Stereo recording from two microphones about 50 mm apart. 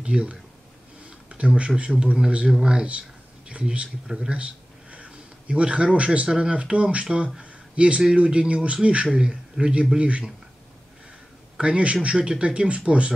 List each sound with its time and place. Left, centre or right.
0.0 s speech: right
4.3 s a sound: right
6.3 s speech: right
7.3 s a sound: right
8.2 s speech: right
11.5 s speech: right